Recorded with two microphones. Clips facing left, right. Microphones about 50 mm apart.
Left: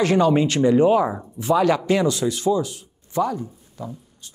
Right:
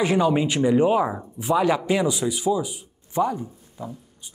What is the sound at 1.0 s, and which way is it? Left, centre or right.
Speech, centre.